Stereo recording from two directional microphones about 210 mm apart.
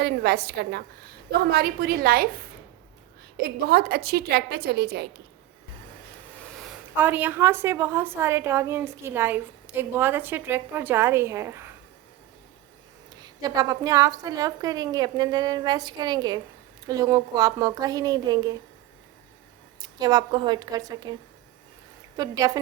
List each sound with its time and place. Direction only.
0.0 s a woman's voice: 50° right (ahead or behind)
3.4 s a woman's voice: 50° right (ahead or behind)
6.6 s a woman's voice: 5° right (ahead or behind)
13.2 s a woman's voice: 20° right (ahead or behind)
19.8 s a woman's voice: 20° right (ahead or behind)
22.2 s a woman's voice: 15° right (ahead or behind)